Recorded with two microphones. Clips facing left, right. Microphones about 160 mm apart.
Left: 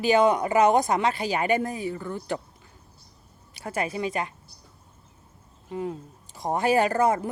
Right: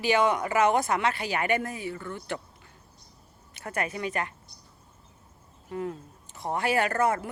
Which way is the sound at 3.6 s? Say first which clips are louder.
Left 3 dB; 25° left (ahead or behind).